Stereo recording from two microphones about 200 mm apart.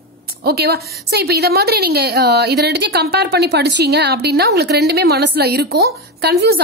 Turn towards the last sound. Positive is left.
turn(degrees=-55)  # may be behind; listen again after turning